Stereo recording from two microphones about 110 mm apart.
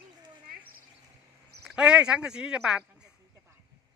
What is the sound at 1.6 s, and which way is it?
Speech, 10° right (ahead or behind).